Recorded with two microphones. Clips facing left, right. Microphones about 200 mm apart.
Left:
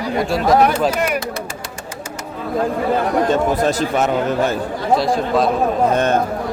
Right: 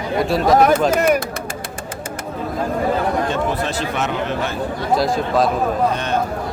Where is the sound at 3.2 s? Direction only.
40° left (ahead or behind).